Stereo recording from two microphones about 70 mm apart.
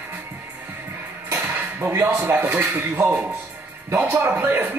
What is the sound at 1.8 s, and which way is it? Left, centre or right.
Speech, right.